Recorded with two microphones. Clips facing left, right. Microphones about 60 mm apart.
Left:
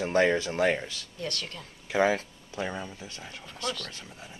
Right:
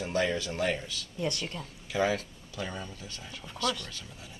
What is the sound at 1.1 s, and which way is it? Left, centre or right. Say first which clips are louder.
Speech: right 4 dB; centre.